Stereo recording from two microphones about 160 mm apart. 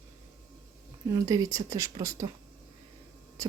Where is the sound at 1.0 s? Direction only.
20° right (ahead or behind).